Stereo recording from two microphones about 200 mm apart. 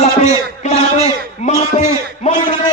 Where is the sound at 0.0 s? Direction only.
35° left (ahead or behind).